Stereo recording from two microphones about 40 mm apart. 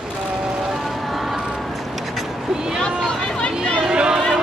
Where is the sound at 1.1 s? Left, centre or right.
Centre.